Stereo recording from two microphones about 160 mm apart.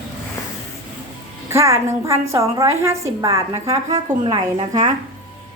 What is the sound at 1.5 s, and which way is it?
A woman's voice, 15° right (ahead or behind).